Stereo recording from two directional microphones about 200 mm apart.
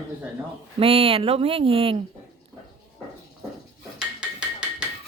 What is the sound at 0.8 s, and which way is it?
Speech, 30° right (ahead or behind).